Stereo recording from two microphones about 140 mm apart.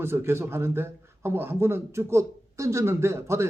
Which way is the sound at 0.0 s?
15° right (ahead or behind).